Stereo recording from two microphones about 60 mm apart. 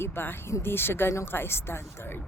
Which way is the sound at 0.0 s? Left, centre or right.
Left.